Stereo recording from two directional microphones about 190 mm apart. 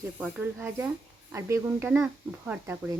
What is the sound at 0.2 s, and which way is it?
A woman's voice, 5° right (ahead or behind).